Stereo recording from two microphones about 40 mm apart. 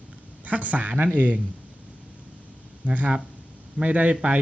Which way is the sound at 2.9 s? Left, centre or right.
Right.